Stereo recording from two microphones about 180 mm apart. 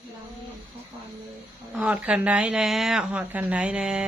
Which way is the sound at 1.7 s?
5° right (ahead or behind).